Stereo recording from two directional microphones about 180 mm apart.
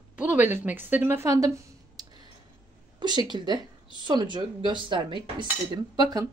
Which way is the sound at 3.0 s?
25° right (ahead or behind).